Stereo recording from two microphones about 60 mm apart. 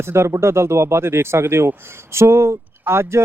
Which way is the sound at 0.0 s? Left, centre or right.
Right.